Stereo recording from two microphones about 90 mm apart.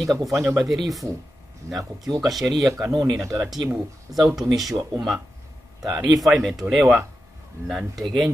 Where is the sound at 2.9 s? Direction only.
55° right (ahead or behind).